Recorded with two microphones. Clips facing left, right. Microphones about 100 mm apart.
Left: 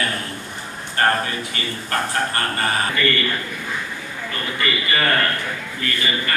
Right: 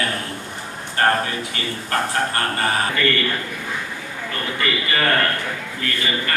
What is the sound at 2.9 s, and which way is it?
A man's voice, 60° right (ahead or behind).